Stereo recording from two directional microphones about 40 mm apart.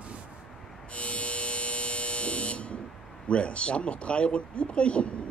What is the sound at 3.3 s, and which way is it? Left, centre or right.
Speech, left.